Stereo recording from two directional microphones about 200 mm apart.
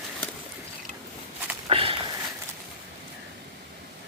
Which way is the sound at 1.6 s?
25° right (ahead or behind).